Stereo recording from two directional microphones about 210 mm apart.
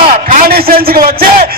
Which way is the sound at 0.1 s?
45° right (ahead or behind).